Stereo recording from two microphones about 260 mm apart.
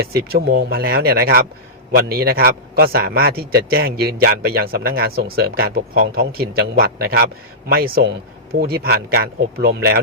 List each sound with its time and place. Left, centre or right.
0.0 s a man's voice: right